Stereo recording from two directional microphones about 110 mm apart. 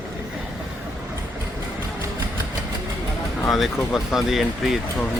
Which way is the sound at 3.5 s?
Centre (ahead or behind).